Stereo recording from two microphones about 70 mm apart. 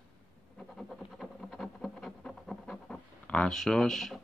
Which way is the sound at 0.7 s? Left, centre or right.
Centre.